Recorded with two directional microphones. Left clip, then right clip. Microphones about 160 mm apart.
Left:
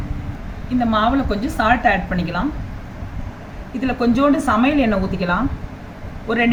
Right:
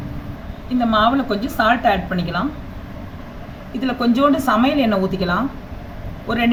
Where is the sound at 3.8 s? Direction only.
20° right (ahead or behind).